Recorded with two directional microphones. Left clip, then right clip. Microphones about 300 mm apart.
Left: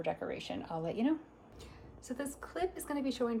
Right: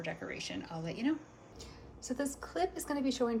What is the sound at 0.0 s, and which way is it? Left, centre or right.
Speech, centre.